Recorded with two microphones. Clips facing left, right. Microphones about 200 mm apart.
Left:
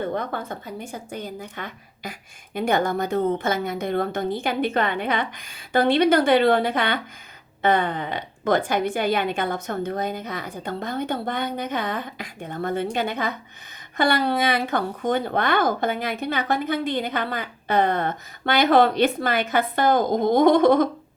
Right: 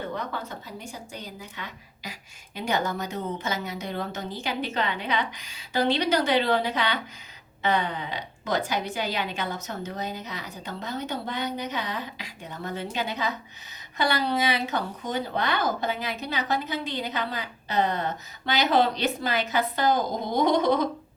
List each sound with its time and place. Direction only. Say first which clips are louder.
0.1 s a woman's voice: left 5 dB; 50° left (ahead or behind)